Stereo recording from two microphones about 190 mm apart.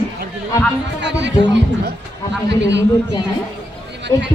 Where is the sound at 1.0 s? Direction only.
65° right (ahead or behind).